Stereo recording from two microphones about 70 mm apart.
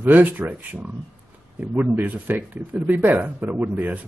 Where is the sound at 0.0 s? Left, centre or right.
Right.